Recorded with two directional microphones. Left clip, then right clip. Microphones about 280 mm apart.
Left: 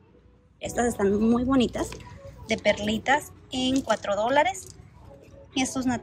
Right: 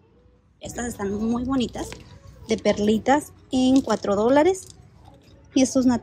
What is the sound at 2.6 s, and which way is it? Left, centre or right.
A woman's voice, centre.